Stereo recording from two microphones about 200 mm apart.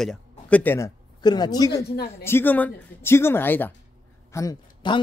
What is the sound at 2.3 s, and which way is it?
A man's voice, 10° left (ahead or behind).